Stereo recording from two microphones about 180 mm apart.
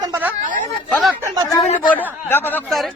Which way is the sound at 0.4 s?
45° right (ahead or behind).